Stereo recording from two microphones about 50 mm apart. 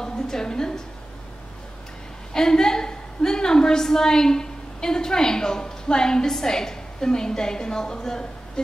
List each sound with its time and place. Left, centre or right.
0.0 s a woman's voice: centre
2.3 s a woman's voice: centre